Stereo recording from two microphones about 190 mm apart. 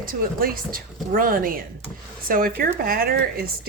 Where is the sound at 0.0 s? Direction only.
50° right (ahead or behind).